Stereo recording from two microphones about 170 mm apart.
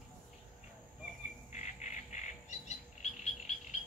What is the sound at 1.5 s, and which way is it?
Bird, 45° left (ahead or behind).